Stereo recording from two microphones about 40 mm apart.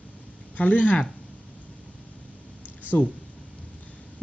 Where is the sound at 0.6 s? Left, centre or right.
Left.